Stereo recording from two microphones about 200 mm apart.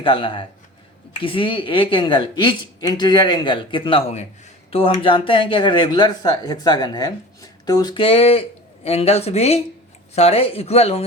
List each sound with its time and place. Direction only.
0.0 s speech: 25° left (ahead or behind)